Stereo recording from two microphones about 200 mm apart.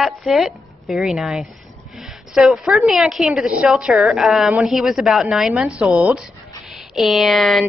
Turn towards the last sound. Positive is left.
turn(degrees=0)  # may be behind; listen again after turning